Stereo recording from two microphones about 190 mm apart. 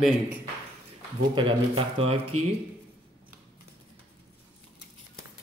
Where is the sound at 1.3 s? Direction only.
25° right (ahead or behind).